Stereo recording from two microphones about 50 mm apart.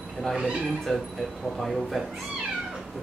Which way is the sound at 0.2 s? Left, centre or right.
Centre.